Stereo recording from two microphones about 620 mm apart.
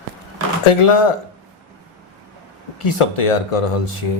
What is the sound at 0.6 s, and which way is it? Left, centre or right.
Speech, left.